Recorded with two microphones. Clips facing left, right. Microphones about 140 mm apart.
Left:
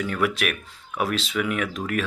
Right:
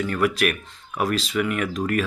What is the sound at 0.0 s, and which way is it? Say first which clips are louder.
Speech: right 3 dB; centre (ahead or behind).